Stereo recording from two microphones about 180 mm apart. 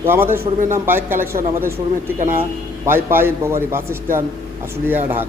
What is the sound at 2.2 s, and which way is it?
Speech, 50° right (ahead or behind).